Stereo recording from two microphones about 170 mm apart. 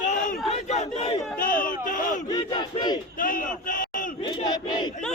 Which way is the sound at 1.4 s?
55° left (ahead or behind).